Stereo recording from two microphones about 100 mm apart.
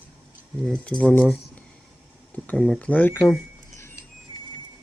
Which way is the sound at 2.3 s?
10° left (ahead or behind).